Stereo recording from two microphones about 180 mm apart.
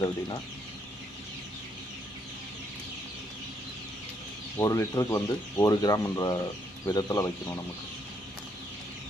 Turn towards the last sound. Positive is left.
turn(degrees=20)  # may be behind; listen again after turning